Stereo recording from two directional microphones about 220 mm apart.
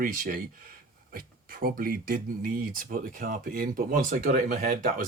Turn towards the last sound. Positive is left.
turn(degrees=-35)  # may be behind; listen again after turning